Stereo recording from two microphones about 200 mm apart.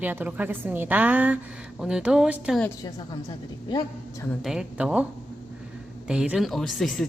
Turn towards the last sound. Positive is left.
turn(degrees=0)  # may be behind; listen again after turning